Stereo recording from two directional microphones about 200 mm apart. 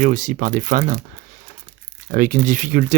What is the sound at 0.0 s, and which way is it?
Speech, 40° right (ahead or behind).